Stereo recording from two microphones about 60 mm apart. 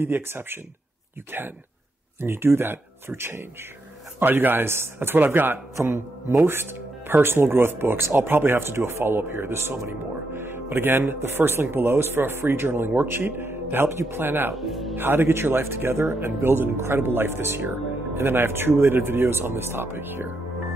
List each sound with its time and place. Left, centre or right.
0.0 s speech: right
2.1 s speech: right
14.5 s speech: centre
15.0 s speech: right